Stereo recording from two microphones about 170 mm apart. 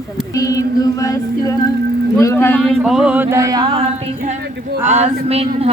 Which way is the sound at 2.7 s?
Centre (ahead or behind).